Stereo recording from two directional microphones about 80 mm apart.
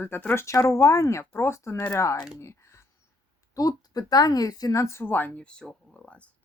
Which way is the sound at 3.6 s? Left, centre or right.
Left.